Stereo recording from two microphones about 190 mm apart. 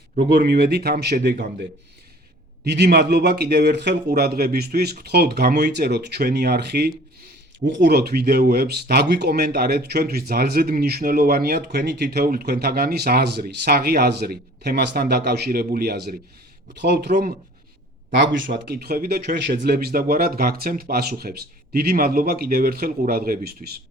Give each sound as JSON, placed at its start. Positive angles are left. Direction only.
{"t": 0.3, "sound": "speech", "side_deg": -60}
{"t": 2.6, "sound": "speech", "side_deg": -60}